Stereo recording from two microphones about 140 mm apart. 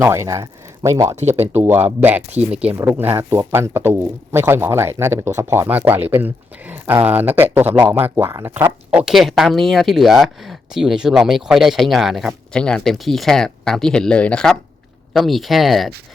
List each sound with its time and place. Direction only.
0.0 s speech: 20° right (ahead or behind)
1.1 s speech: 55° right (ahead or behind)
1.4 s speech: 15° right (ahead or behind)